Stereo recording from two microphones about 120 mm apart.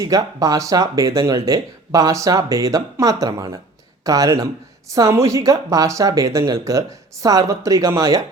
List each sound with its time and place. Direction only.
0.0 s speech: 30° right (ahead or behind)